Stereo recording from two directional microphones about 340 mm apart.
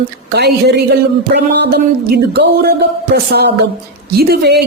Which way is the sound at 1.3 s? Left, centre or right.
Right.